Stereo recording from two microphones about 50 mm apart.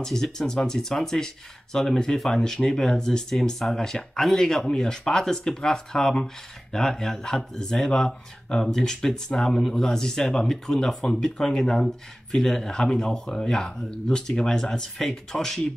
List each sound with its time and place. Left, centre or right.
0.0 s speech: centre